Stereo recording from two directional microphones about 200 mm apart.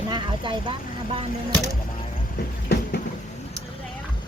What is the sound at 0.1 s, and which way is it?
Speech, 25° right (ahead or behind).